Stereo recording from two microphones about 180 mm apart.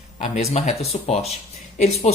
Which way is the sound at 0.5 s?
35° left (ahead or behind).